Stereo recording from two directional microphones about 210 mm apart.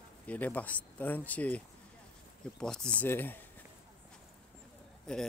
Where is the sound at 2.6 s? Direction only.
5° left (ahead or behind).